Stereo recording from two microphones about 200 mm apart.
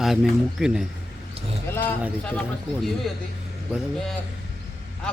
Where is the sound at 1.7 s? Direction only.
10° left (ahead or behind).